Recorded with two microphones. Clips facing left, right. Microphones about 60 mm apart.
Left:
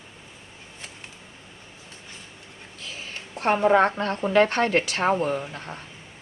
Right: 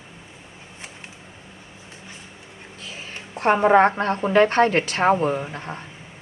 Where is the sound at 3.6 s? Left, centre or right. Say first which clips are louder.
Right 3 dB; right.